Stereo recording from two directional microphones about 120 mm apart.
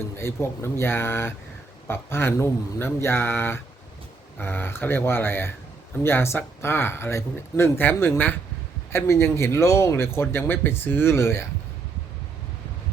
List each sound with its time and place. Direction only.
0.2 s speech: 20° left (ahead or behind)